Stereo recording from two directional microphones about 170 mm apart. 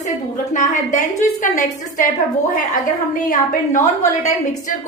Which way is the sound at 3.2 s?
50° left (ahead or behind).